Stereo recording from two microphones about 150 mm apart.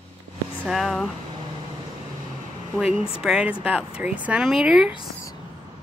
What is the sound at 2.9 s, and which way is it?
Speech, 40° left (ahead or behind).